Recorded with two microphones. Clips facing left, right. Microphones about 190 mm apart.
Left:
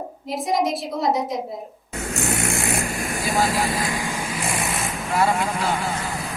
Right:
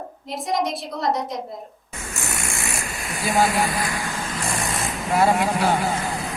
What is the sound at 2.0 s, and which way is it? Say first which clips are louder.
Vehicle: left 7 dB; 60° left (ahead or behind).